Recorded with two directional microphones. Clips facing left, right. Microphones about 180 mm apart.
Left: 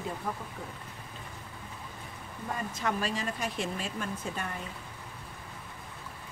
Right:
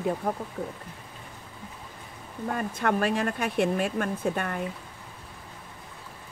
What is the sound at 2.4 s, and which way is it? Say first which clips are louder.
Speech: right 6 dB; 55° right (ahead or behind).